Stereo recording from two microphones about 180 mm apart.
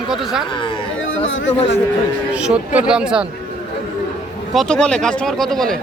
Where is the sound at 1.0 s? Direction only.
90° left.